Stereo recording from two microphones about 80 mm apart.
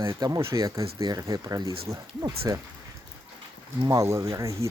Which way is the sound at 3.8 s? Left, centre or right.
Right.